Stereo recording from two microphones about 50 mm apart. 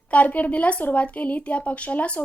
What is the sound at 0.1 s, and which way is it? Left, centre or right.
A woman's voice, left.